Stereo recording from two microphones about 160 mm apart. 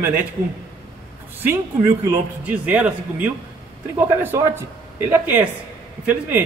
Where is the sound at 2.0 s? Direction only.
10° right (ahead or behind).